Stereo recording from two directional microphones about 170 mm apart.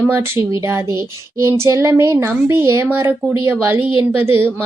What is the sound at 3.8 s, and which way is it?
Speech, 30° left (ahead or behind).